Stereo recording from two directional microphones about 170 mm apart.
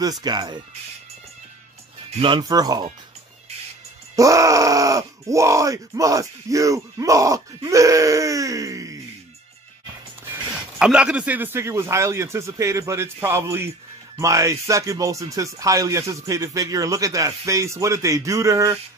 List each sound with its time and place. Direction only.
0.2 s speech: 25° right (ahead or behind)
2.1 s speech: 30° right (ahead or behind)
4.2 s speech: 20° right (ahead or behind)
10.8 s a man's voice: 5° right (ahead or behind)